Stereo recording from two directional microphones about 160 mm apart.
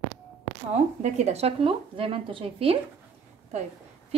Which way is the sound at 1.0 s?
45° right (ahead or behind).